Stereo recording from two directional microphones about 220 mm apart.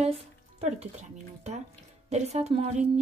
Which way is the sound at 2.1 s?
30° right (ahead or behind).